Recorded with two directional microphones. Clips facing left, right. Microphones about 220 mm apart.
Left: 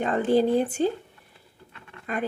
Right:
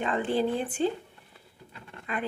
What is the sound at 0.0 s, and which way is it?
Speech, 40° left (ahead or behind).